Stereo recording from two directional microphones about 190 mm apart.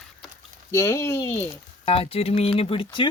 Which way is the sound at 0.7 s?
15° left (ahead or behind).